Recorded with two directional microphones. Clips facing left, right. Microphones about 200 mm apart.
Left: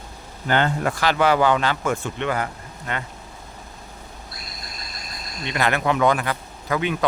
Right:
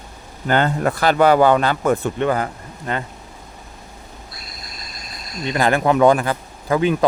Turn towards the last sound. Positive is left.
turn(degrees=-35)  # may be behind; listen again after turning